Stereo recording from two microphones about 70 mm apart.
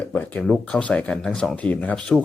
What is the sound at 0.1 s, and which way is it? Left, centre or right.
Speech, left.